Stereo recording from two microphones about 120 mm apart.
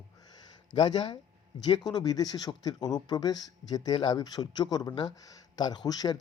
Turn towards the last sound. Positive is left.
turn(degrees=35)  # may be behind; listen again after turning